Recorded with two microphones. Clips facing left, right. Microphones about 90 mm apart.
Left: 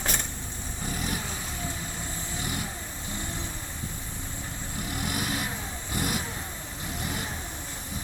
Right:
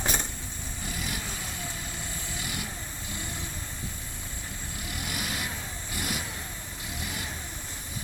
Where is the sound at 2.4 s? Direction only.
40° left (ahead or behind).